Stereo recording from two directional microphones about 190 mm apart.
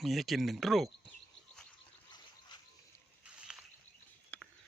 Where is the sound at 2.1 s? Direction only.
20° left (ahead or behind).